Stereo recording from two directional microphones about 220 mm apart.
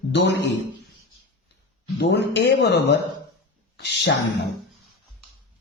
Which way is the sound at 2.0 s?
50° left (ahead or behind).